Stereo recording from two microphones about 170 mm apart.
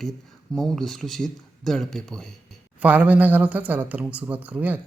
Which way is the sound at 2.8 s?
10° right (ahead or behind).